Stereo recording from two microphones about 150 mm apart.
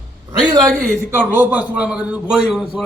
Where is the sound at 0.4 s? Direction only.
25° right (ahead or behind).